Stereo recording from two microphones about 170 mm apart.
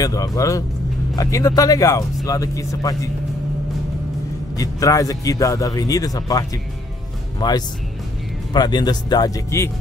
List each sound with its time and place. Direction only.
0.0 s speech: 20° left (ahead or behind)
4.6 s speech: 20° left (ahead or behind)